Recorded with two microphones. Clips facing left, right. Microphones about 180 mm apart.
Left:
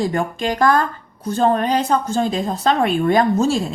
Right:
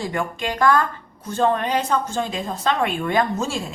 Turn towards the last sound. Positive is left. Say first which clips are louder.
# left 6 dB
turn(degrees=35)  # may be behind; listen again after turning